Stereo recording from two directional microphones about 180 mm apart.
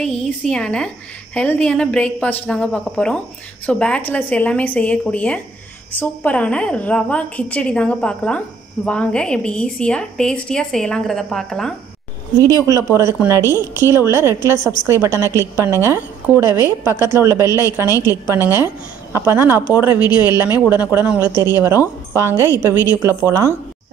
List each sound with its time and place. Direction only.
0.0 s a woman's voice: 5° left (ahead or behind)
12.6 s a woman's voice: 15° right (ahead or behind)